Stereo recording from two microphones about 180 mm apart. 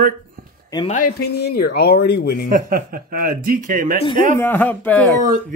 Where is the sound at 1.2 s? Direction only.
65° left (ahead or behind).